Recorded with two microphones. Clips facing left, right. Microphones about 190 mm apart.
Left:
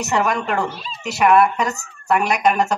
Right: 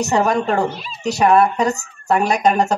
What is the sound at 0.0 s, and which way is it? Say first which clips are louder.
Speech: right 4 dB; 35° right (ahead or behind).